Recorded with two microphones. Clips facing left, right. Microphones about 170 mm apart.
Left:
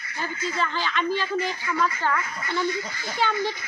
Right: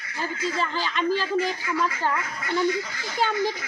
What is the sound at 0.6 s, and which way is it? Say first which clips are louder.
Speech: left 2 dB; 35° right (ahead or behind).